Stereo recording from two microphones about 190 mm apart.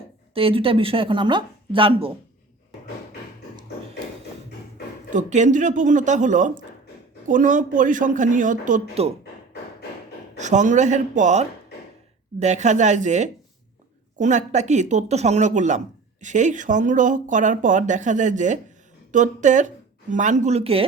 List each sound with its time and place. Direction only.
0.3 s speech: 30° right (ahead or behind)
5.1 s speech: 40° right (ahead or behind)
10.3 s speech: 40° right (ahead or behind)